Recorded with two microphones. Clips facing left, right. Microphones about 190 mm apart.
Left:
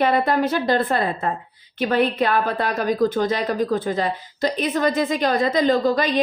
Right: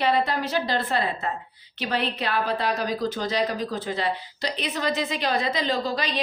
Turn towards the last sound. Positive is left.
turn(degrees=50)  # may be behind; listen again after turning